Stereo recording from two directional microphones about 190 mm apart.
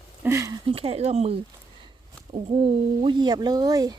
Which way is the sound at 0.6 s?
30° right (ahead or behind).